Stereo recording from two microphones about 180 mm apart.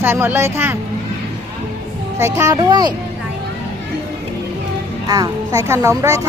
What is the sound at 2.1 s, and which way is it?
Speech, 15° right (ahead or behind).